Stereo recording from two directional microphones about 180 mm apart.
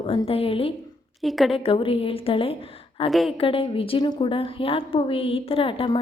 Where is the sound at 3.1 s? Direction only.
Centre (ahead or behind).